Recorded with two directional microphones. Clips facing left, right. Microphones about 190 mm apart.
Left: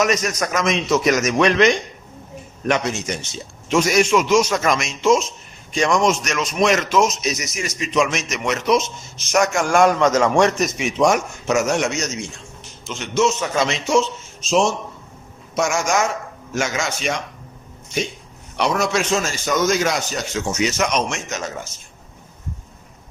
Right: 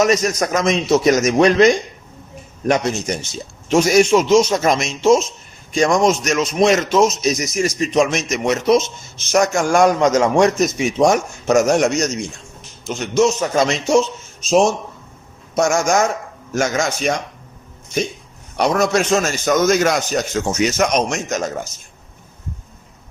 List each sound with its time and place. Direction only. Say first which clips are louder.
0.0 s speech: right 4 dB; 30° right (ahead or behind)
9.8 s a man's voice: right 1 dB; 15° right (ahead or behind)
10.6 s speech: right 3 dB; 35° right (ahead or behind)
15.5 s a man's voice: right 4 dB; 45° right (ahead or behind)
18.5 s a man's voice: right 4 dB; 45° right (ahead or behind)